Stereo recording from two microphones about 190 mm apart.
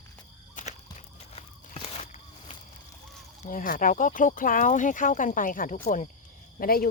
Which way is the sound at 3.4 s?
45° left (ahead or behind).